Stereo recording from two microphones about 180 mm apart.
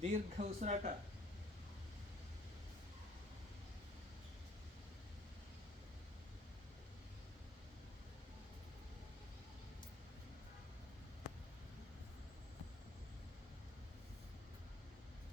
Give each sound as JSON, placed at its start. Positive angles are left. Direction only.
{"t": 0.0, "sound": "speech", "side_deg": -35}